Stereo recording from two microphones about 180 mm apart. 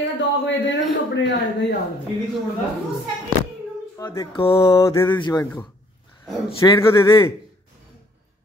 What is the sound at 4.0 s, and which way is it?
Speech, 20° left (ahead or behind).